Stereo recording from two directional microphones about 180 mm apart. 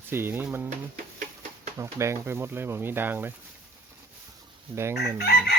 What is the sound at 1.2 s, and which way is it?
Bird, 40° right (ahead or behind).